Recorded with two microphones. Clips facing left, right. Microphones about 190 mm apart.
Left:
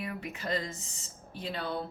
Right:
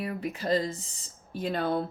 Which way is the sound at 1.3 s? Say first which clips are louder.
Right 7 dB; 50° right (ahead or behind).